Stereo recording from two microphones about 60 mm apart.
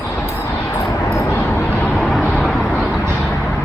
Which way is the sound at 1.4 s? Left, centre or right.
Left.